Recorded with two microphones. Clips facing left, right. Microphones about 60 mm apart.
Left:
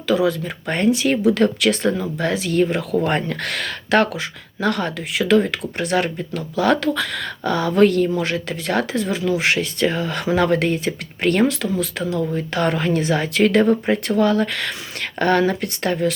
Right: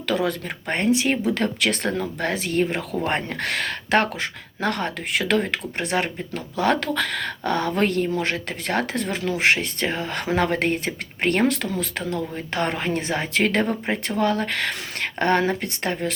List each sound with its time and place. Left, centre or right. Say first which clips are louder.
0.1 s speech: left 5 dB; centre
0.7 s speech: left 3 dB; right
6.9 s speech: even; right
9.4 s speech: left 2 dB; right
12.5 s speech: left 4 dB; right